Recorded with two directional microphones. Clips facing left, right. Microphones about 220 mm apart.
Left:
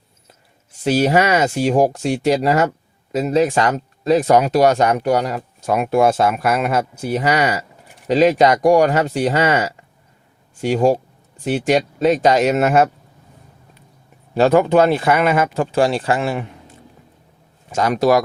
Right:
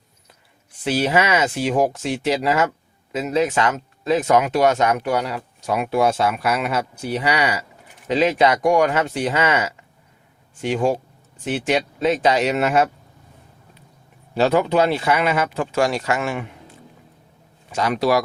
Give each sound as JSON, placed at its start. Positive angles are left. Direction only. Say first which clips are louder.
{"t": 0.9, "sound": "speech", "louder": "left 4 dB", "side_deg": 40}
{"t": 14.3, "sound": "speech", "louder": "left 4 dB", "side_deg": 50}
{"t": 17.7, "sound": "speech", "louder": "left 4 dB", "side_deg": 45}